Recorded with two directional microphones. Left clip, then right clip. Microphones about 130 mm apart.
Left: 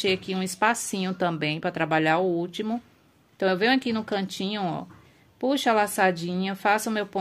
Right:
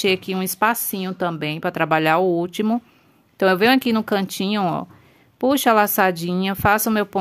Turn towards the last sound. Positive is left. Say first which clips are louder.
# right 6 dB
turn(degrees=-50)  # may be behind; listen again after turning